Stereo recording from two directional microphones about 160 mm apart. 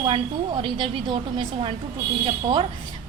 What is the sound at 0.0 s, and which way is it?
Speech, 30° right (ahead or behind).